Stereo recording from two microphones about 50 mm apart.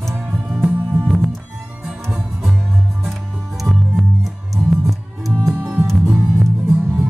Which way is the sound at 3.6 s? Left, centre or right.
Centre.